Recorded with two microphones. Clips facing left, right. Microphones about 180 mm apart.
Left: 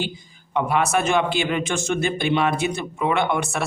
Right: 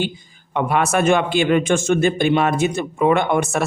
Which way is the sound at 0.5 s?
55° right (ahead or behind).